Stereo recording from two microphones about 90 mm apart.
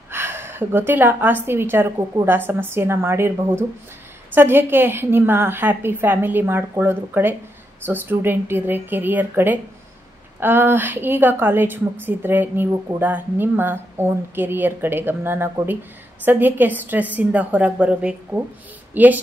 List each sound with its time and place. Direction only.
0.1 s a woman's voice: 25° right (ahead or behind)